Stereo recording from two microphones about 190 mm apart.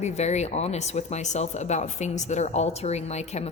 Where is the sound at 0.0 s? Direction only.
35° left (ahead or behind).